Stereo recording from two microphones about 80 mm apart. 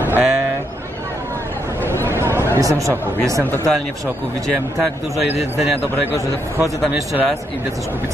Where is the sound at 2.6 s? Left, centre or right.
Right.